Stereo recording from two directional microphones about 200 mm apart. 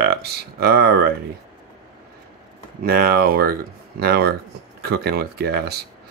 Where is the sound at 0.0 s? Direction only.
55° right (ahead or behind).